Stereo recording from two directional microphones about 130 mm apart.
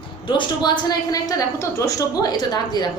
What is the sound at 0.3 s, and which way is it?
A woman's voice, 35° left (ahead or behind).